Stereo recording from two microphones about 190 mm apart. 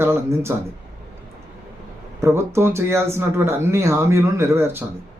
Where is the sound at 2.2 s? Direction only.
15° right (ahead or behind).